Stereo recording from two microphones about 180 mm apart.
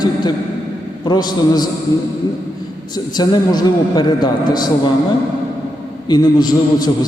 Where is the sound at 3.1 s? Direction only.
25° left (ahead or behind).